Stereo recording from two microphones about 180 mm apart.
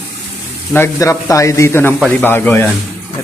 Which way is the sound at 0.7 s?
15° left (ahead or behind).